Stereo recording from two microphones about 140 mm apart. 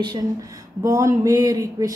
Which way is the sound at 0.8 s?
20° right (ahead or behind).